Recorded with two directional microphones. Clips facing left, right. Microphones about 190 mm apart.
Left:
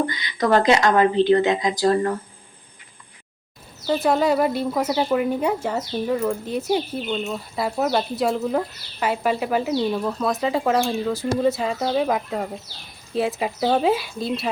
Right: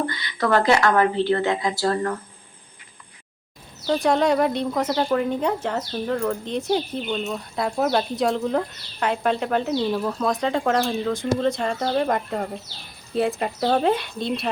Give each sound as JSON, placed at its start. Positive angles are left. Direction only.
{"t": 0.1, "sound": "a woman's voice", "side_deg": 20}
{"t": 3.8, "sound": "speech", "side_deg": 5}